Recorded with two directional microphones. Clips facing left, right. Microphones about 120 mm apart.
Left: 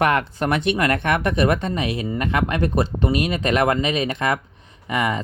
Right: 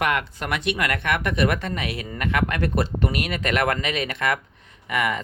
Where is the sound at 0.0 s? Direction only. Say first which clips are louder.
Left 5 dB; 35° left (ahead or behind).